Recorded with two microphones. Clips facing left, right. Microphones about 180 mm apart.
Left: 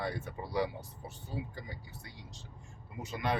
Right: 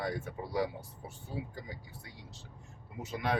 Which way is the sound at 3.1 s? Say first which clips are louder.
Right 1 dB; centre (ahead or behind).